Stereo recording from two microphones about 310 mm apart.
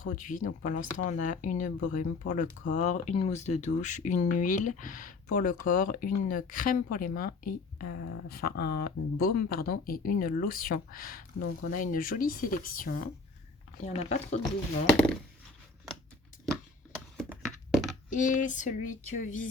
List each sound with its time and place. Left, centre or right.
0.0 s a woman's voice: left
17.2 s a sound: centre
18.1 s a woman's voice: left